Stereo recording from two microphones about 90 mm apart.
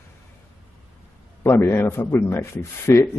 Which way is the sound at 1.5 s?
30° left (ahead or behind).